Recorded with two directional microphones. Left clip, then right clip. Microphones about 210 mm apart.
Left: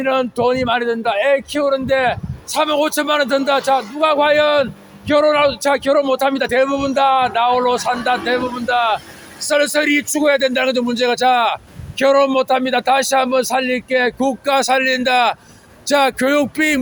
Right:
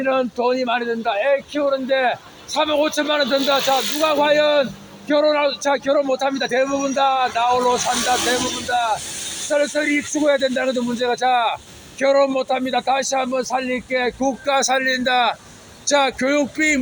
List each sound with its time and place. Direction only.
0.0 s a man's voice: 10° left (ahead or behind); by 16.8 s 35° left (ahead or behind)